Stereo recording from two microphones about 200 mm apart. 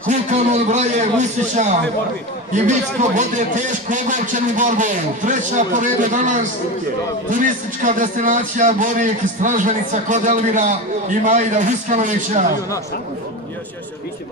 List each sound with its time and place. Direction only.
0.3 s a man's voice: 35° right (ahead or behind)